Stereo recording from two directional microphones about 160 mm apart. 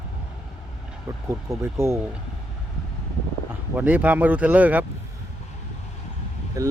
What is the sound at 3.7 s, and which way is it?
Speech, 10° right (ahead or behind).